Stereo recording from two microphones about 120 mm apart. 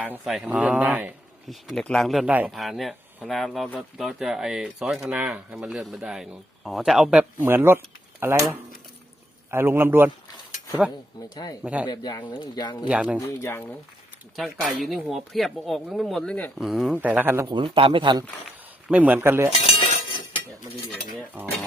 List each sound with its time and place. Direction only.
0.3 s speech: 5° right (ahead or behind)
1.5 s speech: centre (ahead or behind)
7.4 s a man's voice: 20° right (ahead or behind)
9.5 s a man's voice: 20° right (ahead or behind)
11.2 s speech: 35° left (ahead or behind)
11.6 s speech: 10° right (ahead or behind)
11.9 s speech: 35° left (ahead or behind)
12.9 s speech: 10° right (ahead or behind)
13.1 s speech: 25° left (ahead or behind)
14.3 s speech: centre (ahead or behind)
16.9 s speech: 15° right (ahead or behind)
17.5 s speech: 45° right (ahead or behind)
18.9 s speech: 15° right (ahead or behind)
19.5 s cutlery: 60° left (ahead or behind)